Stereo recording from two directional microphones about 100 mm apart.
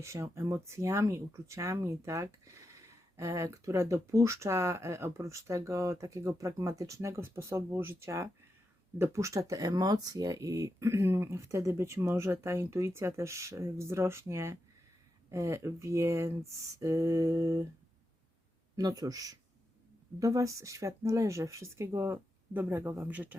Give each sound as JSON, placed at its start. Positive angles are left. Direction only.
{"t": 0.0, "sound": "speech", "side_deg": -30}
{"t": 18.8, "sound": "speech", "side_deg": -40}